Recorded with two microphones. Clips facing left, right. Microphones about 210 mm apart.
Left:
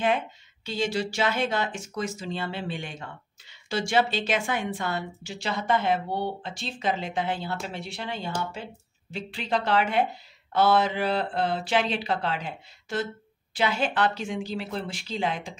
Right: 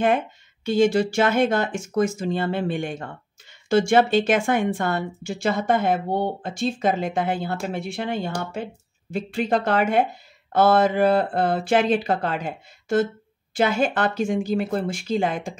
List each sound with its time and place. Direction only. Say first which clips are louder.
0.7 s speech: right 9 dB; 50° right (ahead or behind)